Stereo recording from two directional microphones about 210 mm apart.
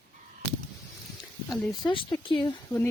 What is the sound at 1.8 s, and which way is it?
Speech, 20° left (ahead or behind).